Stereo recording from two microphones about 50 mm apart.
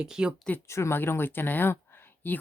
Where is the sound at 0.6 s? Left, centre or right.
Left.